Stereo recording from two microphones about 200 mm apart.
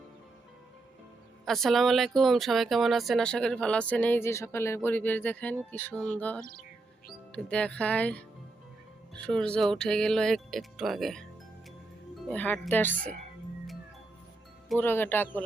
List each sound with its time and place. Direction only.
1.5 s speech: centre (ahead or behind)
6.4 s speech: 45° left (ahead or behind)
7.3 s speech: 5° left (ahead or behind)
12.3 s speech: 5° left (ahead or behind)
14.7 s speech: 10° left (ahead or behind)